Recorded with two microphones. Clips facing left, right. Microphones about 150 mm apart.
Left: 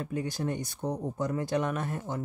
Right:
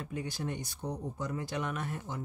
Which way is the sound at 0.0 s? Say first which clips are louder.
Left 5 dB; 45° left (ahead or behind).